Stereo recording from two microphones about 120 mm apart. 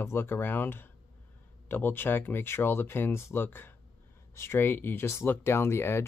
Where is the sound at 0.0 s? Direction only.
20° left (ahead or behind).